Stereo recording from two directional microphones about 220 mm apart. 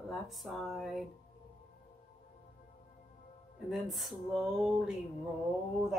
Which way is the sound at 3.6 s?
Centre (ahead or behind).